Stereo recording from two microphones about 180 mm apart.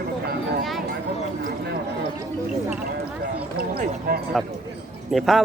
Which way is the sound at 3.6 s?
55° right (ahead or behind).